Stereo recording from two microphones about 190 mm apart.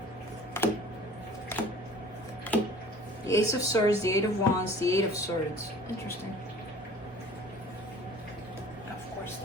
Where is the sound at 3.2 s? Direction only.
15° left (ahead or behind).